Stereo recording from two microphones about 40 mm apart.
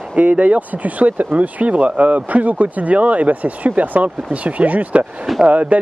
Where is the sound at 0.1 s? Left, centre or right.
Right.